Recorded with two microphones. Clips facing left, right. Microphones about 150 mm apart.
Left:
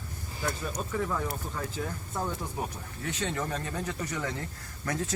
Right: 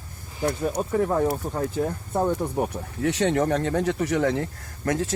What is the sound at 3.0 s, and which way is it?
Speech, 75° right (ahead or behind).